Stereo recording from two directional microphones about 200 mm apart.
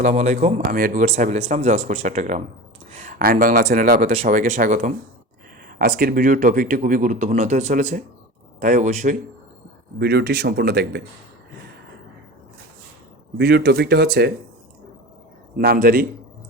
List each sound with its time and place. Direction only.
0.0 s speech: 35° right (ahead or behind)
10.0 s speech: 55° right (ahead or behind)
13.3 s speech: 55° right (ahead or behind)
15.5 s speech: 50° right (ahead or behind)